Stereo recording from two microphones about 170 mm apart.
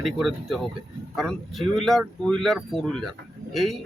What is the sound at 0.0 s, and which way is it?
Speech, centre (ahead or behind).